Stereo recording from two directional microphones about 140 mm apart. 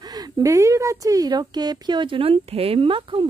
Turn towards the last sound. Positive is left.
turn(degrees=-40)  # may be behind; listen again after turning